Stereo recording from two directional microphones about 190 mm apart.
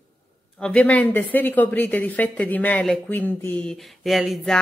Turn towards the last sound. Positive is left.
turn(degrees=0)  # may be behind; listen again after turning